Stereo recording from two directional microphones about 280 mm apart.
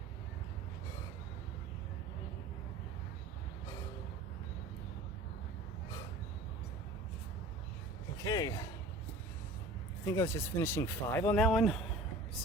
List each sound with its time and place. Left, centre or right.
8.2 s speech: centre
10.1 s speech: centre